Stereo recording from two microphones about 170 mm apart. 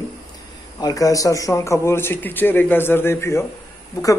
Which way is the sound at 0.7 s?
20° left (ahead or behind).